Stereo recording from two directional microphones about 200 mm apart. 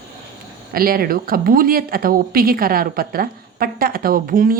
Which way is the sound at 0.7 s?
45° right (ahead or behind).